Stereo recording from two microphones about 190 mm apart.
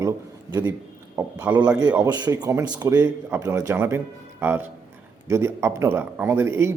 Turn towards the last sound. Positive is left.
turn(degrees=-10)  # may be behind; listen again after turning